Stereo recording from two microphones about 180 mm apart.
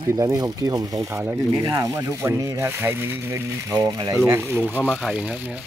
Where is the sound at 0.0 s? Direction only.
20° right (ahead or behind).